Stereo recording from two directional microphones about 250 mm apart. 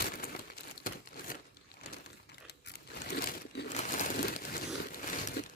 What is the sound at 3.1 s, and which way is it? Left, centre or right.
Crumpling, left.